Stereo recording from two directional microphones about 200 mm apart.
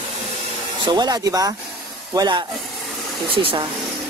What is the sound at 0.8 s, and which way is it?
Speech, 20° right (ahead or behind).